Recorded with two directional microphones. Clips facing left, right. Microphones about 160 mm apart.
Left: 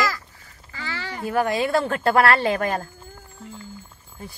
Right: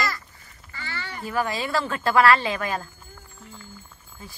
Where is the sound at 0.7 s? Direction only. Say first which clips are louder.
Left 3 dB; 90° left.